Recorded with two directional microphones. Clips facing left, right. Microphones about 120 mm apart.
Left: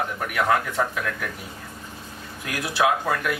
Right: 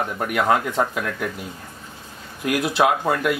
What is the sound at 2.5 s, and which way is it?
Speech, 25° right (ahead or behind).